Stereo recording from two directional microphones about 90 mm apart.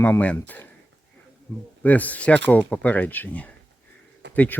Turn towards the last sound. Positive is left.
turn(degrees=15)  # may be behind; listen again after turning